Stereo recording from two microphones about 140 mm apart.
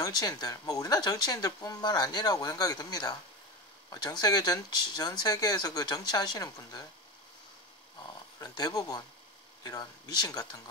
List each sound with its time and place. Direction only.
0.0 s speech: 30° left (ahead or behind)
8.4 s speech: 25° left (ahead or behind)